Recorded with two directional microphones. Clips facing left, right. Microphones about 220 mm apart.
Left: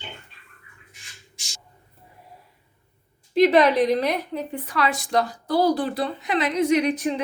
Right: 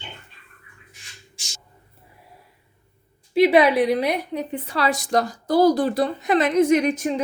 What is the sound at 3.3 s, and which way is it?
A woman's voice, 10° right (ahead or behind).